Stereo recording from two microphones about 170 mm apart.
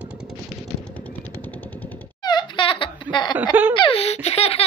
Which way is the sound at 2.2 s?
25° left (ahead or behind).